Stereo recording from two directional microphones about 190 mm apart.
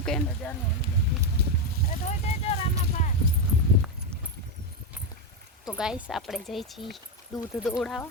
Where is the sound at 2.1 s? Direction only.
30° left (ahead or behind).